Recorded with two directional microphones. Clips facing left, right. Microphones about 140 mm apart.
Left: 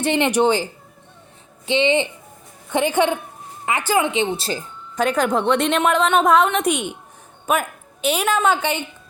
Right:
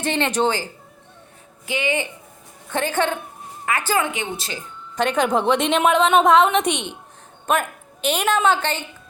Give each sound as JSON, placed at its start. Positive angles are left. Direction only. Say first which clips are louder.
{"t": 0.0, "sound": "speech", "louder": "left 3 dB", "side_deg": 15}
{"t": 4.9, "sound": "a woman's voice", "louder": "even", "side_deg": 0}